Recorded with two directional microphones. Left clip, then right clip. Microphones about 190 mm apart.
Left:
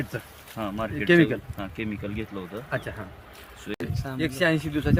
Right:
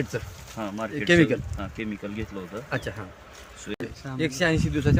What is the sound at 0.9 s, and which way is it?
Speech, 50° right (ahead or behind).